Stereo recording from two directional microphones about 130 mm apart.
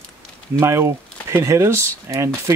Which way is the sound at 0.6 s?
20° right (ahead or behind).